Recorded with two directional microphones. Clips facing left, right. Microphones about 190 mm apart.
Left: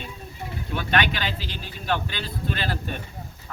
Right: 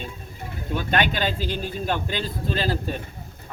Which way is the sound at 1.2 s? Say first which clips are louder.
Right 6 dB; 50° right (ahead or behind).